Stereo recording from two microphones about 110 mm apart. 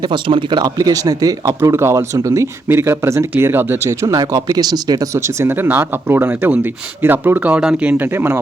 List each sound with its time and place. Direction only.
0.0 s speech: 50° right (ahead or behind)
0.6 s speech: 35° right (ahead or behind)
4.0 s speech: 30° right (ahead or behind)